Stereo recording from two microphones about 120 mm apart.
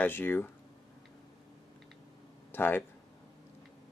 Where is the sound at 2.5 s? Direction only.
15° left (ahead or behind).